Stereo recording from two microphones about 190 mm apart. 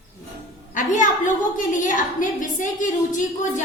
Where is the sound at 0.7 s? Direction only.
40° left (ahead or behind).